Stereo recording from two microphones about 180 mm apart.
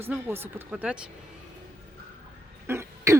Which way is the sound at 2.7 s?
15° right (ahead or behind).